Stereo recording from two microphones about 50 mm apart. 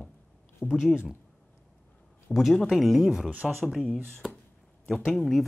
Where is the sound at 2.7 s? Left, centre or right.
Centre.